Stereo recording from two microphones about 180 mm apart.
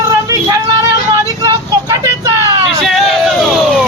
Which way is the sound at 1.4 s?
20° right (ahead or behind).